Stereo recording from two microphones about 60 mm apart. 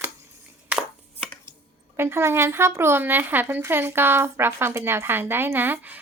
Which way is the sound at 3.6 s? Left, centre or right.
Right.